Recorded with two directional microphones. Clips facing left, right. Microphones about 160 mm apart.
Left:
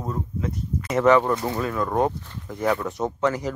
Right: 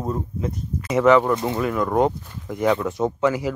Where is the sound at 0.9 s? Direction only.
10° right (ahead or behind).